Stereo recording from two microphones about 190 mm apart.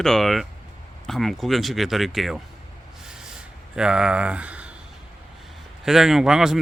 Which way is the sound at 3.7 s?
5° right (ahead or behind).